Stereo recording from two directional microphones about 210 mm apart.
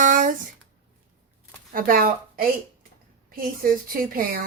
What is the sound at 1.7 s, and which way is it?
Speech, 40° right (ahead or behind).